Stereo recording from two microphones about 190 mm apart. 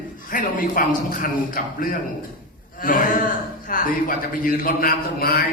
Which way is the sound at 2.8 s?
45° left (ahead or behind).